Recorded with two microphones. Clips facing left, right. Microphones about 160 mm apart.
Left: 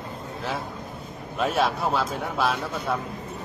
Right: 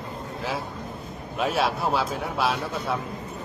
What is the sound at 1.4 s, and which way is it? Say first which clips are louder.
A man's voice: left 1 dB; centre (ahead or behind).